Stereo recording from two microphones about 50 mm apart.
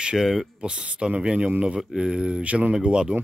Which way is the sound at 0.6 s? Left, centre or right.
Right.